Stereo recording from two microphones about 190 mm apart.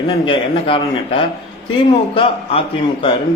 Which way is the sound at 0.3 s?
25° left (ahead or behind).